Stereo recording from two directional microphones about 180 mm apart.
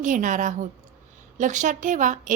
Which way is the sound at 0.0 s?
45° right (ahead or behind).